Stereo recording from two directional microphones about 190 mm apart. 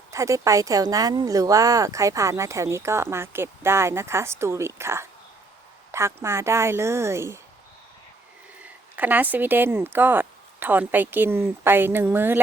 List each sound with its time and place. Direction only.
0.1 s speech: 15° right (ahead or behind)
8.6 s speech: 10° right (ahead or behind)